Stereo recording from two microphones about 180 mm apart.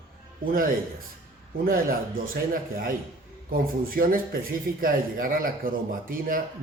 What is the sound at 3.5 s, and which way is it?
A man's voice, 55° right (ahead or behind).